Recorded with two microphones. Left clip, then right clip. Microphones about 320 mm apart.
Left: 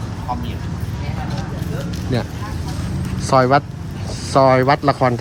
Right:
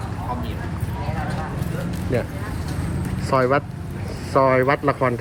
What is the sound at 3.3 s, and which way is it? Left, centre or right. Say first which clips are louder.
Speech: left 5 dB; centre.